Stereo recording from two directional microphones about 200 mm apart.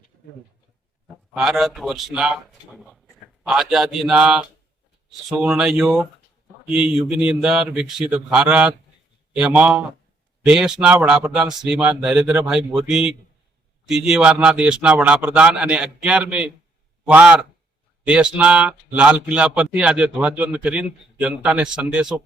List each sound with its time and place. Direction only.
1.4 s a man's voice: centre (ahead or behind)